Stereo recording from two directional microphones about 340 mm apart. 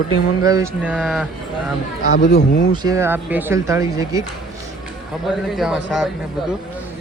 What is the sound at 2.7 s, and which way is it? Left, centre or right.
Speech, centre.